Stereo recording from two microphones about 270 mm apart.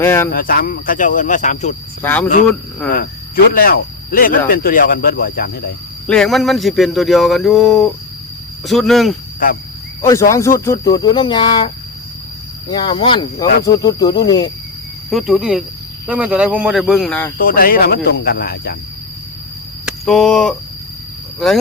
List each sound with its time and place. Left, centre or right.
0.0 s speech: centre
0.3 s speech: left
2.0 s speech: centre
2.9 s speech: left
6.1 s speech: centre
9.4 s speech: left
10.0 s speech: centre
12.7 s speech: centre
13.5 s speech: left
13.8 s speech: centre
15.1 s speech: centre
17.4 s speech: left
19.8 s speech: centre